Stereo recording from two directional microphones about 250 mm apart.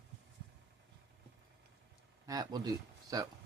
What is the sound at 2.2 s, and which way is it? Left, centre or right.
Speech, centre.